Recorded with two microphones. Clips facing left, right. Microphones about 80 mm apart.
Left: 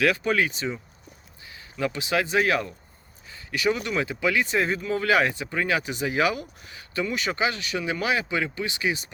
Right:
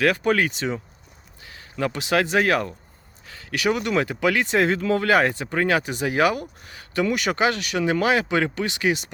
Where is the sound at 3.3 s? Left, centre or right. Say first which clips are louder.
Right 2 dB; right.